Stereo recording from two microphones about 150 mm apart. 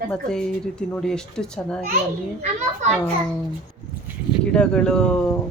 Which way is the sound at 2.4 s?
50° right (ahead or behind).